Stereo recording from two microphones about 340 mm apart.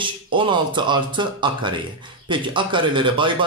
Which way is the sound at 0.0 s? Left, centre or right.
Centre.